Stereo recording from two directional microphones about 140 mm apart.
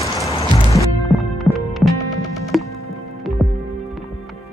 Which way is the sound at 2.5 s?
Centre (ahead or behind).